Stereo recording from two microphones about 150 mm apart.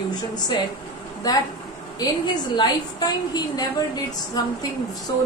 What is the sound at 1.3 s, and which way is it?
Speech, 25° left (ahead or behind).